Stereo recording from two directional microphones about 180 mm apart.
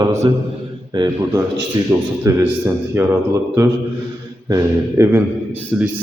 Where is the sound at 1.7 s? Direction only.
20° right (ahead or behind).